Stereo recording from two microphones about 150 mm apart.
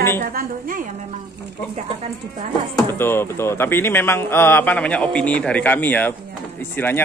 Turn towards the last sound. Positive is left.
turn(degrees=15)  # may be behind; listen again after turning